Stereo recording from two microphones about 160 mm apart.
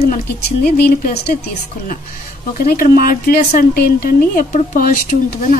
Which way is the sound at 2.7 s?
65° left (ahead or behind).